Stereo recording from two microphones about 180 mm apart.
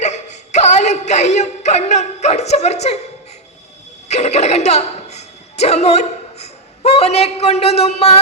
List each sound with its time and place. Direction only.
0.0 s speech: 40° left (ahead or behind)
4.1 s a woman's voice: 40° left (ahead or behind)